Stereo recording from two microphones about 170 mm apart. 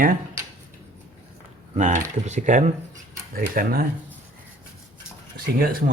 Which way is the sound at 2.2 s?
45° right (ahead or behind).